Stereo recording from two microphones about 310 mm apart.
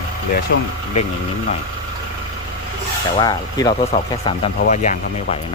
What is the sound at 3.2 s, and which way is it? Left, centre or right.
Speech, centre.